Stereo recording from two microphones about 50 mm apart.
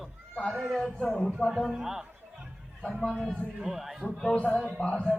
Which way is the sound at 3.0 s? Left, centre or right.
Centre.